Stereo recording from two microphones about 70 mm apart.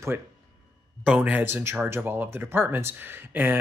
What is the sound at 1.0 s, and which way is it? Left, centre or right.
Speech, centre.